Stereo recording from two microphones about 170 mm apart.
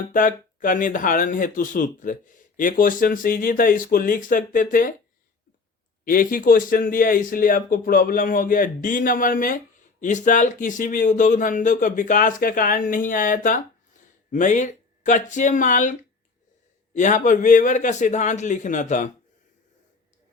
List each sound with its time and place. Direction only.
0.1 s speech: 50° left (ahead or behind)
6.1 s speech: 55° left (ahead or behind)